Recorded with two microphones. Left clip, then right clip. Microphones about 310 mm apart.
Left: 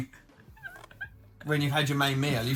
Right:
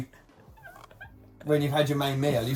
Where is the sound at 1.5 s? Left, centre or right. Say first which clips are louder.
Right 4 dB; left.